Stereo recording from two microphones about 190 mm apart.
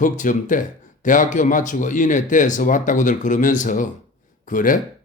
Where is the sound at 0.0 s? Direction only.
45° left (ahead or behind).